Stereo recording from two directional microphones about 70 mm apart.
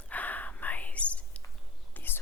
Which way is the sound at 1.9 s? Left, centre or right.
Left.